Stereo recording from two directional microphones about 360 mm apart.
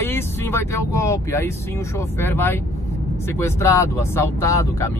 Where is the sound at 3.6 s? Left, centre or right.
Centre.